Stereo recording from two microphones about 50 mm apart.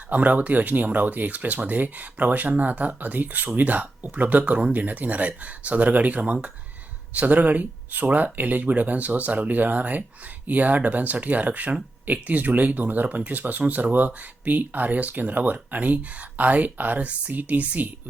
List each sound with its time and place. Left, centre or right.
0.1 s speech: right